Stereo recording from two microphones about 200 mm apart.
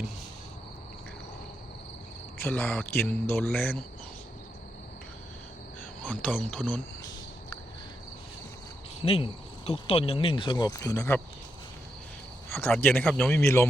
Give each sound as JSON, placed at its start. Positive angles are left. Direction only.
{"t": 2.4, "sound": "speech", "side_deg": 10}
{"t": 6.1, "sound": "speech", "side_deg": 5}
{"t": 9.0, "sound": "speech", "side_deg": 30}
{"t": 12.5, "sound": "speech", "side_deg": 10}